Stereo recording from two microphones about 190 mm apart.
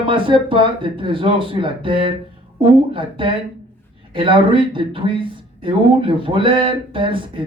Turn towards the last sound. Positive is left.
turn(degrees=-25)  # may be behind; listen again after turning